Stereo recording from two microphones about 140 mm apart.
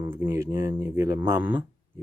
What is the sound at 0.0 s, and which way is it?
Speech, 15° right (ahead or behind).